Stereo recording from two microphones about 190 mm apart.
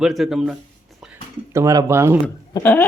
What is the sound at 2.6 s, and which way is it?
Speech, 10° left (ahead or behind).